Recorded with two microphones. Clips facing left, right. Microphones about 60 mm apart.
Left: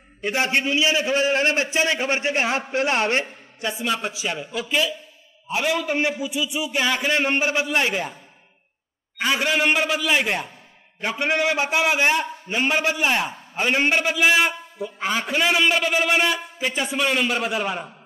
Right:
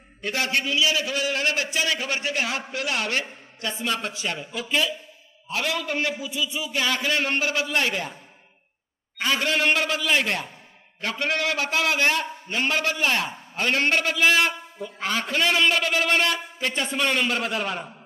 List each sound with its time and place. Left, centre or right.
0.2 s a man's voice: left
3.8 s a man's voice: centre
5.5 s a man's voice: centre
9.2 s a man's voice: centre